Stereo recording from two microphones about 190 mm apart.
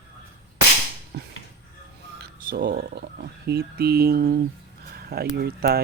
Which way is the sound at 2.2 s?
50° right (ahead or behind).